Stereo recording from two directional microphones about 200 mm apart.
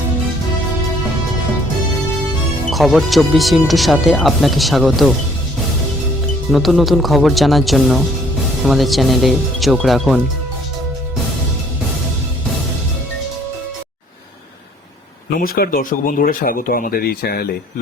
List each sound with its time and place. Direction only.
2.6 s speech: centre (ahead or behind)
6.5 s speech: centre (ahead or behind)
15.3 s speech: 50° left (ahead or behind)